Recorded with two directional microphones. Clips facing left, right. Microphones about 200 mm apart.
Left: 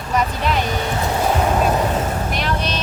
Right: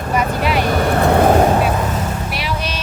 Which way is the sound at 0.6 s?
55° right (ahead or behind).